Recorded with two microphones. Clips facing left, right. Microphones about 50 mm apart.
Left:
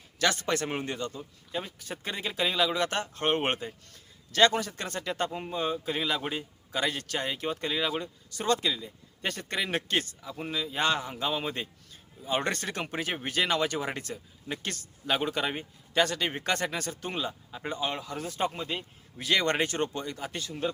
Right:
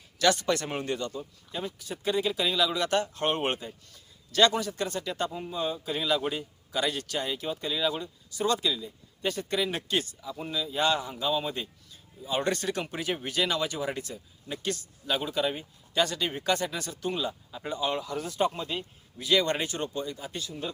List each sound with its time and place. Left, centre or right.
0.2 s a man's voice: left
9.3 s a man's voice: left
19.2 s speech: left